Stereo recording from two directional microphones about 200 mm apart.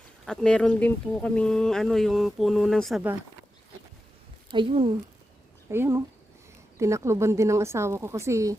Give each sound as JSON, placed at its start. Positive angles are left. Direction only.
{"t": 0.3, "sound": "speech", "side_deg": 5}
{"t": 4.5, "sound": "speech", "side_deg": -25}
{"t": 5.6, "sound": "speech", "side_deg": -10}